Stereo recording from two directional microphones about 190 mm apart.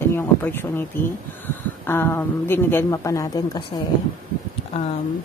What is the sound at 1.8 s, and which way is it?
Speech, 10° left (ahead or behind).